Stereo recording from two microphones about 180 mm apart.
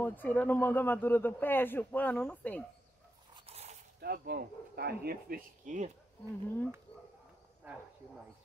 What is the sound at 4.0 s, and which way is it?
Speech, 60° right (ahead or behind).